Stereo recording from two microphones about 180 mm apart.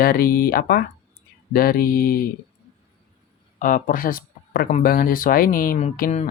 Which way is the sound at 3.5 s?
50° left (ahead or behind).